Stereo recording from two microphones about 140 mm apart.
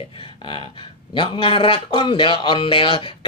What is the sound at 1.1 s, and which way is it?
Speech, 35° left (ahead or behind).